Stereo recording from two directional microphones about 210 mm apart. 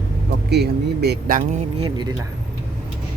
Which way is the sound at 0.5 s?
50° right (ahead or behind).